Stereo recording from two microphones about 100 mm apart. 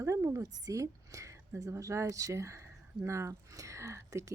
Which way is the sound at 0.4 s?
35° right (ahead or behind).